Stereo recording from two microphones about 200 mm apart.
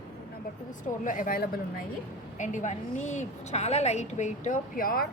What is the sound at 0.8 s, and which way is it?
A woman's voice, 40° left (ahead or behind).